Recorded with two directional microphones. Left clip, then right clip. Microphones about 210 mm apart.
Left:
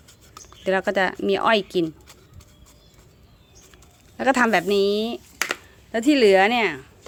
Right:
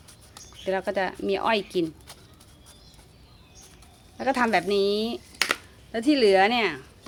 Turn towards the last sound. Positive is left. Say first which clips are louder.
# left 3 dB
turn(degrees=25)  # may be behind; listen again after turning